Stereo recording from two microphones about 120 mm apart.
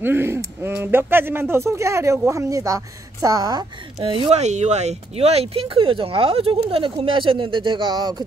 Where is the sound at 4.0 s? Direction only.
50° right (ahead or behind).